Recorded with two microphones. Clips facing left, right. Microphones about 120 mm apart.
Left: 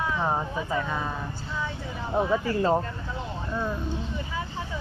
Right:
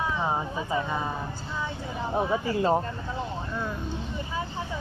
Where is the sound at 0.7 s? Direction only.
20° right (ahead or behind).